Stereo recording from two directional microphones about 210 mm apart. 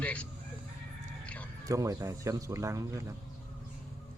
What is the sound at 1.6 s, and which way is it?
Speech, 15° right (ahead or behind).